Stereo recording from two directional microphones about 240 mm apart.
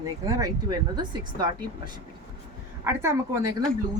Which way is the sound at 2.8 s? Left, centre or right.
Centre.